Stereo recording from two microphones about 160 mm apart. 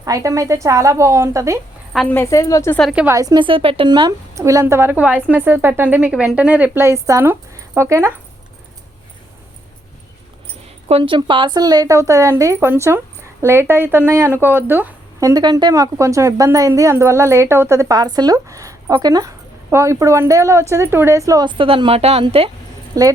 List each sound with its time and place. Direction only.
0.0 s speech: 20° right (ahead or behind)
2.0 s a woman's voice: 15° left (ahead or behind)
3.1 s speech: 20° right (ahead or behind)
4.4 s a woman's voice: 20° right (ahead or behind)
10.8 s speech: 35° right (ahead or behind)
23.0 s speech: 20° right (ahead or behind)